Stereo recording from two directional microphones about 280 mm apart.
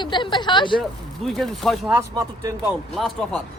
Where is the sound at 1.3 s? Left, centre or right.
Centre.